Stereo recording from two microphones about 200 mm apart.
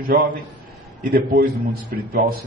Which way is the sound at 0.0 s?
45° right (ahead or behind).